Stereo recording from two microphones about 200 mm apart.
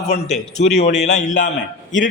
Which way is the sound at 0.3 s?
35° left (ahead or behind).